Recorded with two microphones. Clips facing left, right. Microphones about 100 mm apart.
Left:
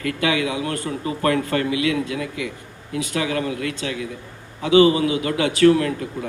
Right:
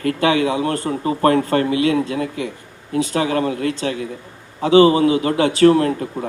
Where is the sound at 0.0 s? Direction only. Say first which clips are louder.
Right 5 dB; 35° right (ahead or behind).